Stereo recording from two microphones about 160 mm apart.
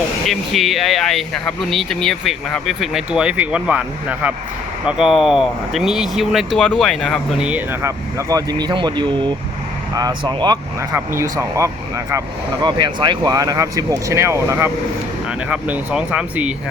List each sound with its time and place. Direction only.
0.3 s speech: centre (ahead or behind); by 10.6 s 25° right (ahead or behind)
10.9 s speech: 15° right (ahead or behind)
12.6 s speech: 30° right (ahead or behind); by 16.5 s 10° right (ahead or behind)